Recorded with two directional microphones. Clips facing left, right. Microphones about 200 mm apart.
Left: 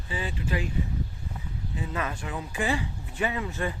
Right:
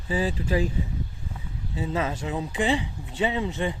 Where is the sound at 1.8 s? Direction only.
25° right (ahead or behind).